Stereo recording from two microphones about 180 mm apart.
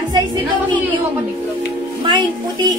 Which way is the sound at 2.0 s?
25° right (ahead or behind).